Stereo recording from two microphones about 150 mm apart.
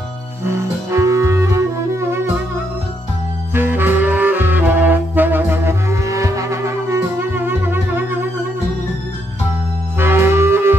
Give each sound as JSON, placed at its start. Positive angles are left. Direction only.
{"t": 0.4, "sound": "music", "side_deg": -20}
{"t": 3.5, "sound": "music", "side_deg": -15}
{"t": 9.9, "sound": "music", "side_deg": -15}